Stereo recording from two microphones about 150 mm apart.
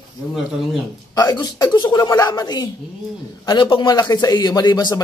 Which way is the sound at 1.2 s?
25° left (ahead or behind).